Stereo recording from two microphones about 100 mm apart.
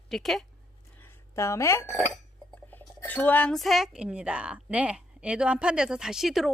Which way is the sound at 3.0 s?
15° left (ahead or behind).